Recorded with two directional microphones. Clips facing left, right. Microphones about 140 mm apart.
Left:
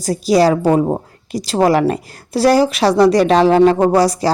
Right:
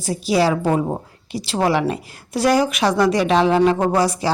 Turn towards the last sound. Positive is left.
turn(degrees=35)  # may be behind; listen again after turning